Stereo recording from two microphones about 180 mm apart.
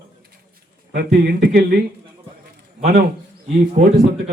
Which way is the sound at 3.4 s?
40° right (ahead or behind).